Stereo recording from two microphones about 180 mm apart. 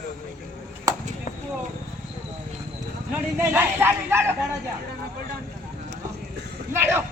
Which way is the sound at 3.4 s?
10° right (ahead or behind).